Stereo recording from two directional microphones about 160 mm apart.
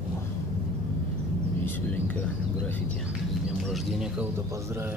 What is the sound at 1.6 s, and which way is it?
Speech, 10° left (ahead or behind).